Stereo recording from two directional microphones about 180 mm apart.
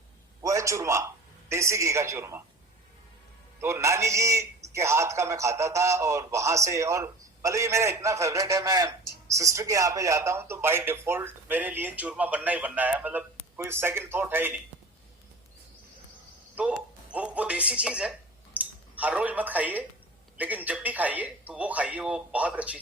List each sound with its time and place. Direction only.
0.4 s a man's voice: 15° right (ahead or behind)
3.6 s a man's voice: 15° right (ahead or behind)
16.6 s a man's voice: 5° right (ahead or behind)